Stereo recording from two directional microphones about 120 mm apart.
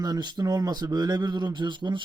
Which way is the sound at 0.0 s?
35° right (ahead or behind).